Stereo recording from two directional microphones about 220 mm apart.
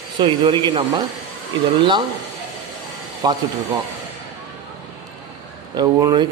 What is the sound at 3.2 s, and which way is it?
Speech, 20° right (ahead or behind).